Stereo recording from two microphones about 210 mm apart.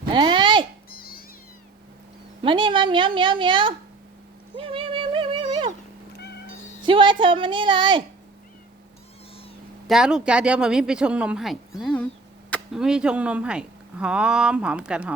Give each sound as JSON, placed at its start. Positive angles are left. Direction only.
{"t": 0.1, "sound": "a sound", "side_deg": -20}
{"t": 0.9, "sound": "cat", "side_deg": 45}
{"t": 2.4, "sound": "a woman's voice", "side_deg": -25}
{"t": 4.5, "sound": "a sound", "side_deg": -25}
{"t": 6.8, "sound": "a woman's voice", "side_deg": -25}
{"t": 9.8, "sound": "speech", "side_deg": 0}